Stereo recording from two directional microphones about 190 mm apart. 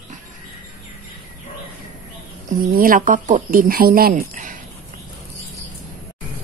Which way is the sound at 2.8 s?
45° right (ahead or behind).